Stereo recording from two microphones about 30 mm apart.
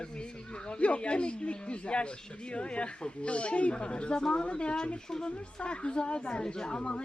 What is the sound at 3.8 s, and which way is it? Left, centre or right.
Speech, left.